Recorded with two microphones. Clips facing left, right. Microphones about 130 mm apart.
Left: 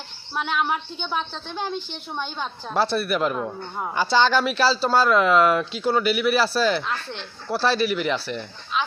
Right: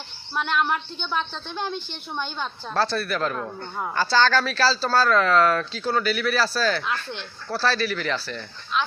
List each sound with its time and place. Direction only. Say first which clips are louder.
0.3 s a woman's voice: even; 5° left (ahead or behind)
6.8 s a woman's voice: even; centre (ahead or behind)
7.4 s speech: left 3 dB; 20° left (ahead or behind)
8.7 s a sound: even; centre (ahead or behind)